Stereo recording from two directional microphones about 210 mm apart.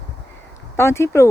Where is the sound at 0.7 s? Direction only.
10° left (ahead or behind).